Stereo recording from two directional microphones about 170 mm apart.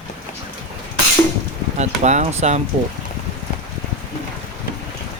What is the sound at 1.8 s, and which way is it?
Speech, 45° right (ahead or behind).